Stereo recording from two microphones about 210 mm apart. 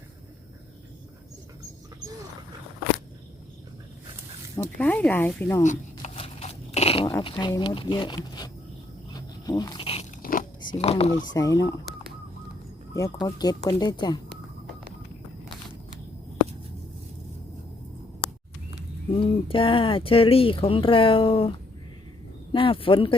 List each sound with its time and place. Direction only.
4.8 s speech: 5° left (ahead or behind)
5.6 s a sound: 30° left (ahead or behind)
7.1 s speech: 20° left (ahead or behind)
9.1 s a sound: 20° left (ahead or behind)
10.2 s biting: 40° left (ahead or behind)
10.8 s speech: 30° left (ahead or behind)
11.3 s speech: 15° left (ahead or behind)
13.2 s speech: 20° left (ahead or behind)
19.1 s speech: 25° left (ahead or behind)
22.5 s speech: 25° left (ahead or behind)